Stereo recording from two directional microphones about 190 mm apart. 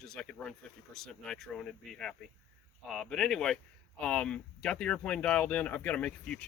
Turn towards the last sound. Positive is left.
turn(degrees=5)  # may be behind; listen again after turning